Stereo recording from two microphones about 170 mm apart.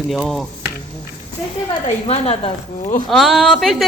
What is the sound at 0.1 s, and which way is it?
Speech, centre (ahead or behind).